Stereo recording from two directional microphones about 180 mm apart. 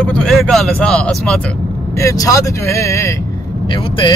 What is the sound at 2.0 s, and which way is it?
Speech, 15° left (ahead or behind).